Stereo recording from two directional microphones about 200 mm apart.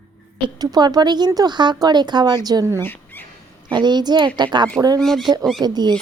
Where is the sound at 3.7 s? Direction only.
20° right (ahead or behind).